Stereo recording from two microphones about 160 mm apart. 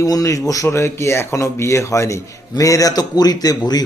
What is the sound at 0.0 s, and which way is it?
Speech, 20° left (ahead or behind).